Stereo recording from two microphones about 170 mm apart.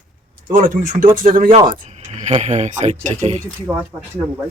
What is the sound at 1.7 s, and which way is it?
Speech, 45° right (ahead or behind).